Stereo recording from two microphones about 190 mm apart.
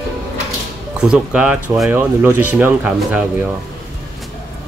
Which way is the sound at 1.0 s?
5° right (ahead or behind).